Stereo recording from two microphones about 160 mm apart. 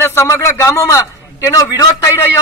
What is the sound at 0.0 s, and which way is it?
A man's voice, 15° left (ahead or behind).